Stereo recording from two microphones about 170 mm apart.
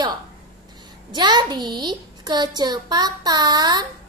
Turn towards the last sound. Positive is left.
turn(degrees=-25)  # may be behind; listen again after turning